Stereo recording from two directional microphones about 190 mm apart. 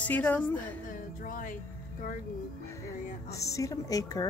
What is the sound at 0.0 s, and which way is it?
Speech, 10° left (ahead or behind).